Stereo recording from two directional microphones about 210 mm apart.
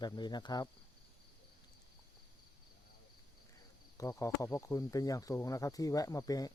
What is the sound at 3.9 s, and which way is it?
Speech, 15° left (ahead or behind).